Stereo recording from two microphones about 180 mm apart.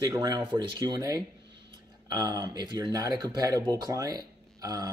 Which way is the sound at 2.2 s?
20° right (ahead or behind).